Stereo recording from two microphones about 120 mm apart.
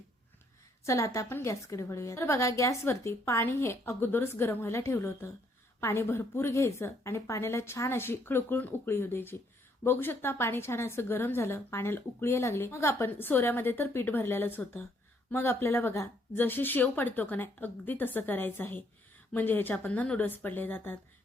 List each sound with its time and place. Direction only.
0.9 s a woman's voice: 25° left (ahead or behind)